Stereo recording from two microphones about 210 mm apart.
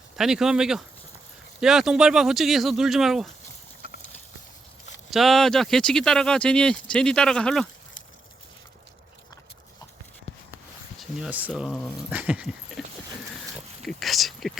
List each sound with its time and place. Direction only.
0.2 s speech: 5° right (ahead or behind)
5.1 s speech: centre (ahead or behind)
11.2 s speech: 5° right (ahead or behind)
13.8 s speech: centre (ahead or behind)